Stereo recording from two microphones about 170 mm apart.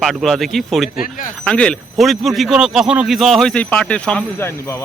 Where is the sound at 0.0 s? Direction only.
Centre (ahead or behind).